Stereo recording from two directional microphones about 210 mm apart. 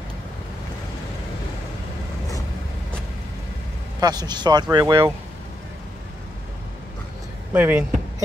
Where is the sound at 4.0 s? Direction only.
20° right (ahead or behind).